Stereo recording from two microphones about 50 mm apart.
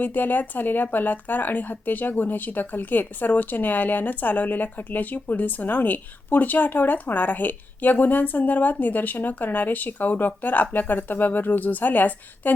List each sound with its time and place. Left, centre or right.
0.0 s speech: left